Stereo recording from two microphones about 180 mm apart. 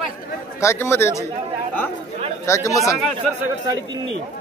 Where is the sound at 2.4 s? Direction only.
15° left (ahead or behind).